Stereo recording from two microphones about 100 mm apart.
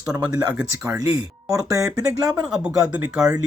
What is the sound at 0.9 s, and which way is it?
Speech, 35° right (ahead or behind).